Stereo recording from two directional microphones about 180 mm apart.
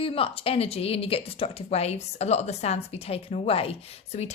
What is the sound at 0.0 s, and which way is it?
Speech, 30° left (ahead or behind).